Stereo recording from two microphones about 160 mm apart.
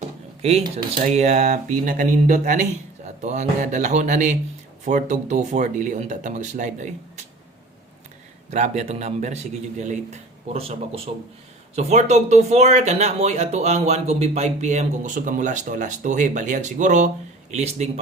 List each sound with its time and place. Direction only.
0.6 s speech: 25° right (ahead or behind)
1.0 s speech: 45° right (ahead or behind)
8.4 s speech: 45° right (ahead or behind)